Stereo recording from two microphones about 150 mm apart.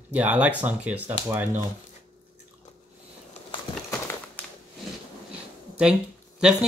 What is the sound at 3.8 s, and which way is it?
Crumpling, 15° left (ahead or behind).